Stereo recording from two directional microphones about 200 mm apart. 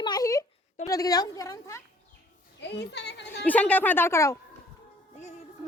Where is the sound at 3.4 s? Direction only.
5° left (ahead or behind).